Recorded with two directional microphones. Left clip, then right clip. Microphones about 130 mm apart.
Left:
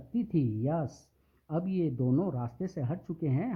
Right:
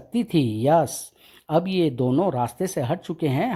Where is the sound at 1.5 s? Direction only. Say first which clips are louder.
Right 12 dB; 50° right (ahead or behind).